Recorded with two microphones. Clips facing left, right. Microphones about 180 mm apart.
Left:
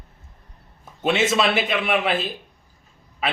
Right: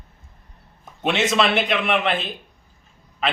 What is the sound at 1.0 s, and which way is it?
Speech, 5° left (ahead or behind).